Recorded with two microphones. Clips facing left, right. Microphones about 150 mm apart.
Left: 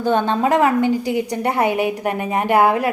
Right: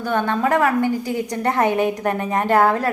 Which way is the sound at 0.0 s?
20° left (ahead or behind).